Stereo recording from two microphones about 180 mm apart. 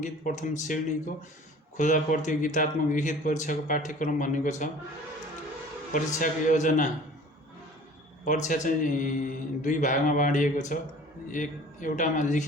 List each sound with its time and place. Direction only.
0.0 s speech: 45° left (ahead or behind)
5.9 s speech: 45° left (ahead or behind)
8.4 s speech: 45° left (ahead or behind)